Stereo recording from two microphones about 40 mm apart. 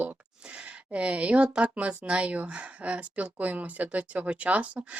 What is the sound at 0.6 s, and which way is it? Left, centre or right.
Speech, right.